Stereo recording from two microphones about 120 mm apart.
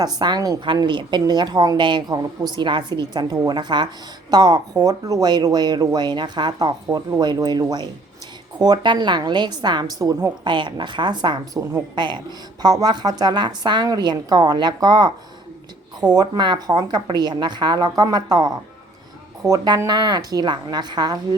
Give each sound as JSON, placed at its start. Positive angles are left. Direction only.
{"t": 0.0, "sound": "a woman's voice", "side_deg": -35}
{"t": 10.4, "sound": "a woman's voice", "side_deg": -40}